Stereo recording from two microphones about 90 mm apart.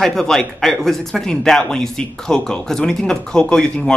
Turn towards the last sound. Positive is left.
turn(degrees=10)  # may be behind; listen again after turning